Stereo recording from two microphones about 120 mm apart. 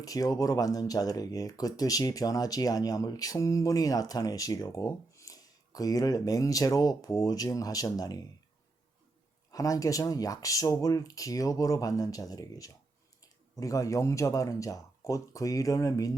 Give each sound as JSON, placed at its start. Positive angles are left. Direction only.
{"t": 0.0, "sound": "speech", "side_deg": 30}
{"t": 9.5, "sound": "speech", "side_deg": 30}